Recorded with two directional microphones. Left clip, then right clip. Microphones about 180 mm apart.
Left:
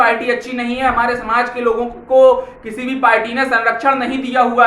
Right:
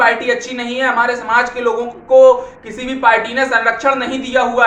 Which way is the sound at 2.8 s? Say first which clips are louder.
Right 1 dB; 5° left (ahead or behind).